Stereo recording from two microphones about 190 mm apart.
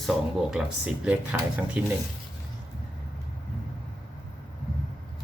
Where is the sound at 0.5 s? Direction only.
5° right (ahead or behind).